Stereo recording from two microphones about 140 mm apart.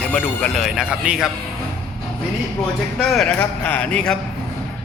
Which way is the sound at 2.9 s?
Centre (ahead or behind).